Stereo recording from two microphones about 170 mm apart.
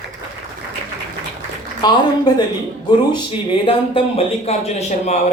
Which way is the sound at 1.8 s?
25° left (ahead or behind).